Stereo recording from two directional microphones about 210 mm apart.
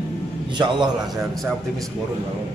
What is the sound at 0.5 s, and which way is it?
Speech, 20° right (ahead or behind).